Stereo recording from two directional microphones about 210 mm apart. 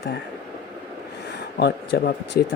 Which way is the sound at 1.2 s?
50° left (ahead or behind).